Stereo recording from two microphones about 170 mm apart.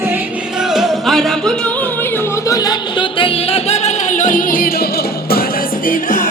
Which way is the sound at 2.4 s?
20° left (ahead or behind).